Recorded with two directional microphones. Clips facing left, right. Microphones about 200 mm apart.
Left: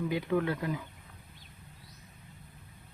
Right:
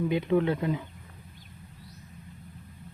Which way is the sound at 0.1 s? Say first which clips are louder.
Right 5 dB; 25° right (ahead or behind).